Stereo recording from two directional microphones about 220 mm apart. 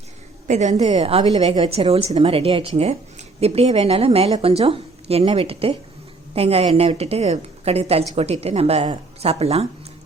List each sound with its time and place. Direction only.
0.4 s a woman's voice: 30° right (ahead or behind)